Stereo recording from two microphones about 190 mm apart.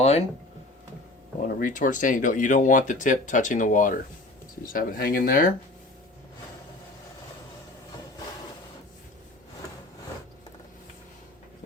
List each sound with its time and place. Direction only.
0.0 s speech: 35° left (ahead or behind)
1.4 s speech: 45° left (ahead or behind)